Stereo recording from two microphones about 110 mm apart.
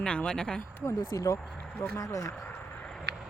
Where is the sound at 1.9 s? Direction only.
30° left (ahead or behind).